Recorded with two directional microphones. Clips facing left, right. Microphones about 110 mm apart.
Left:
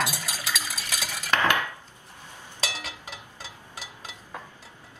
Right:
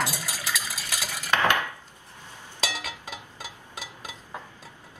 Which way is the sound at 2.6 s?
15° right (ahead or behind).